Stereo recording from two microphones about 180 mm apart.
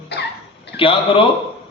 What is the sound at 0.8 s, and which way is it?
Speech, 30° left (ahead or behind).